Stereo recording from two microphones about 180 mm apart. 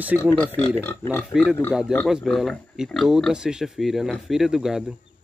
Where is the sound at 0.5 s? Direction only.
10° left (ahead or behind).